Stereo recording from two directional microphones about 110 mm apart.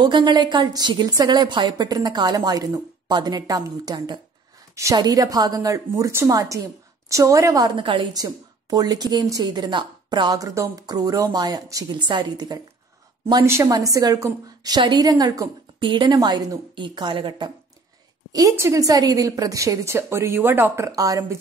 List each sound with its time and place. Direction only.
0.0 s speech: 45° right (ahead or behind)
7.7 s a woman's voice: 50° right (ahead or behind)
8.1 s speech: 35° right (ahead or behind)
13.5 s a woman's voice: 30° right (ahead or behind); by 17.5 s 50° right (ahead or behind)
18.3 s a woman's voice: 30° right (ahead or behind)